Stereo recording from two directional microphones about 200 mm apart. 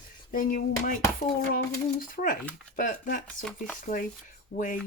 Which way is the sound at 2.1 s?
40° left (ahead or behind).